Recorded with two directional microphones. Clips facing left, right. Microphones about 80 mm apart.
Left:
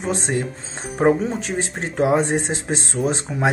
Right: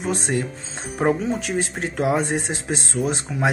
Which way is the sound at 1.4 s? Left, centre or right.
Left.